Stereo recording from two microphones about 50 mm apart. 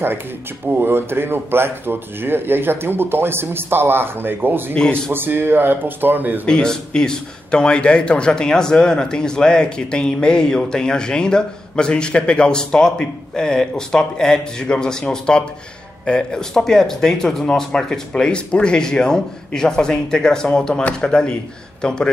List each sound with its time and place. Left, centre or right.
0.7 s speech: right
4.7 s a man's voice: centre
5.1 s speech: right
6.4 s a man's voice: centre